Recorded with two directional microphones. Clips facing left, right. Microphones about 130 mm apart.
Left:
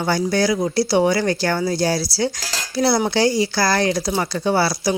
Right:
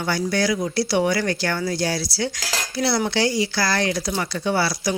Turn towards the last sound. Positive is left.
turn(degrees=35)  # may be behind; listen again after turning